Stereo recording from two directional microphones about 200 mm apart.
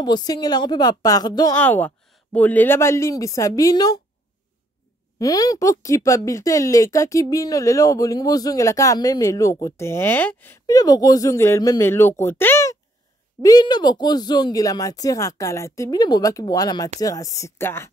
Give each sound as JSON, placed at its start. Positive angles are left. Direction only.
{"t": 0.0, "sound": "speech", "side_deg": 20}
{"t": 1.6, "sound": "speech", "side_deg": 10}
{"t": 5.2, "sound": "speech", "side_deg": 15}